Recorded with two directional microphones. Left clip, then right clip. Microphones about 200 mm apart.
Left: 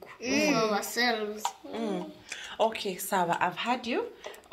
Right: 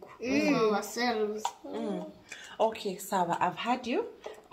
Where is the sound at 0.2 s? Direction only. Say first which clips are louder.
Left 1 dB; 50° right (ahead or behind).